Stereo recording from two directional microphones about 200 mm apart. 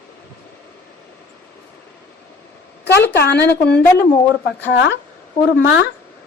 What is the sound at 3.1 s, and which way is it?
Speech, 55° left (ahead or behind).